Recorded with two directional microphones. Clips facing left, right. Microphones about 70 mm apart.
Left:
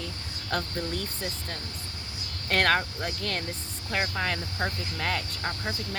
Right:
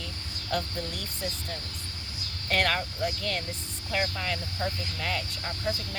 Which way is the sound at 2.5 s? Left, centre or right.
Left.